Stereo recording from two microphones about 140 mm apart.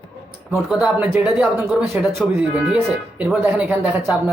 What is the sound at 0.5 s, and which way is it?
Speech, 5° right (ahead or behind).